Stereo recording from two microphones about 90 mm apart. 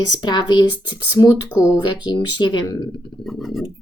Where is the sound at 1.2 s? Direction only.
45° left (ahead or behind).